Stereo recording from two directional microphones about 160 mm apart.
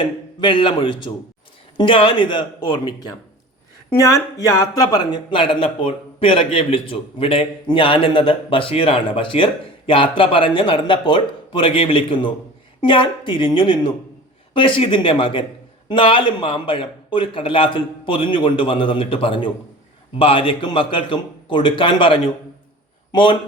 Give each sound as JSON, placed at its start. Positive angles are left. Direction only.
{"t": 0.0, "sound": "speech", "side_deg": 30}